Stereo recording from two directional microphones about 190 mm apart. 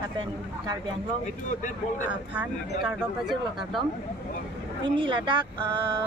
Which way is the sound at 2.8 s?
5° right (ahead or behind).